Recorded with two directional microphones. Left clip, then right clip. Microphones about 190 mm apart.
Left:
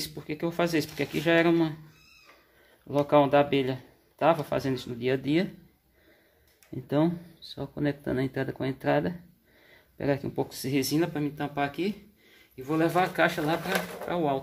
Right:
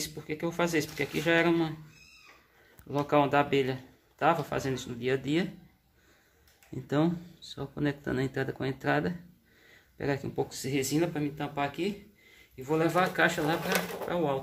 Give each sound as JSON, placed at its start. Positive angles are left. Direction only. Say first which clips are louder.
{"t": 0.0, "sound": "speech", "louder": "left 2 dB", "side_deg": 30}
{"t": 2.9, "sound": "speech", "louder": "left 4 dB", "side_deg": 25}
{"t": 6.7, "sound": "speech", "louder": "left 2 dB", "side_deg": 20}